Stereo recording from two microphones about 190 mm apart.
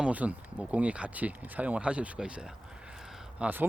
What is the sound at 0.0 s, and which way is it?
Speech, 5° right (ahead or behind).